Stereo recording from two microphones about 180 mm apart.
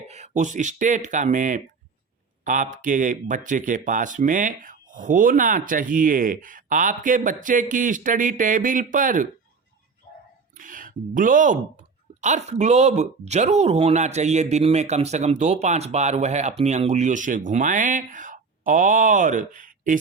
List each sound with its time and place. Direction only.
0.1 s speech: 40° right (ahead or behind)
10.6 s speech: 50° right (ahead or behind)